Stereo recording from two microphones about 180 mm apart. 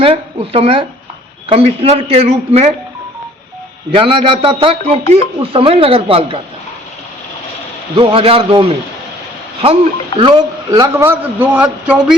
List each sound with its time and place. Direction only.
0.0 s a man's voice: 30° right (ahead or behind)
3.9 s a man's voice: 30° right (ahead or behind)
7.9 s a man's voice: 30° right (ahead or behind)
9.6 s a man's voice: 30° right (ahead or behind); by 12.1 s 5° right (ahead or behind)